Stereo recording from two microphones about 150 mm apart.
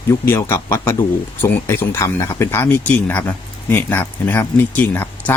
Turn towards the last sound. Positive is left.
turn(degrees=15)  # may be behind; listen again after turning